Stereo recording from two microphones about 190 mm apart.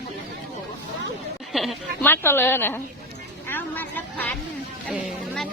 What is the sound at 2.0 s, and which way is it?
A woman's voice, 10° left (ahead or behind).